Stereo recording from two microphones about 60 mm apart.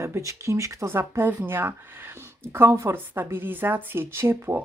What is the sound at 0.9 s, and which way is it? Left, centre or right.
Speech, right.